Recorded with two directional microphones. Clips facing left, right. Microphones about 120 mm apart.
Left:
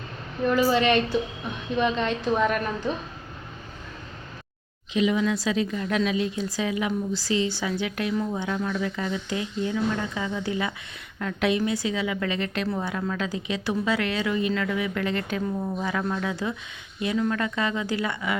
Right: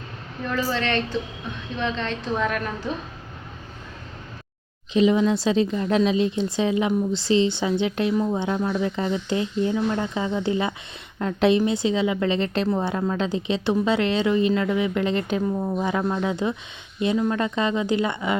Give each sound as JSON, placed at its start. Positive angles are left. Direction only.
{"t": 0.4, "sound": "a woman's voice", "side_deg": 10}
{"t": 4.9, "sound": "speech", "side_deg": -30}